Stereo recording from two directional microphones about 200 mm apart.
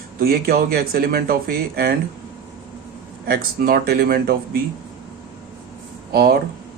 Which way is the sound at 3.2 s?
50° right (ahead or behind).